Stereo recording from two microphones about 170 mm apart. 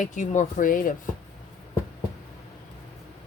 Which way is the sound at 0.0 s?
50° left (ahead or behind).